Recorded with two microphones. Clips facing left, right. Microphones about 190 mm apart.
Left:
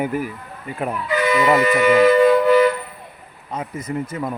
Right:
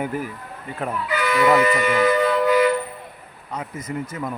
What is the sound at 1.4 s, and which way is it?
Speech, 25° left (ahead or behind).